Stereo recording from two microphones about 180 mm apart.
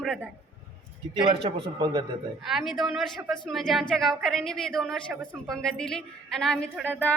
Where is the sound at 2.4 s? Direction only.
Centre (ahead or behind).